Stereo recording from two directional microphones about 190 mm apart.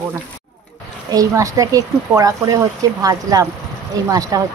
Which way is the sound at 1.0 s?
20° right (ahead or behind).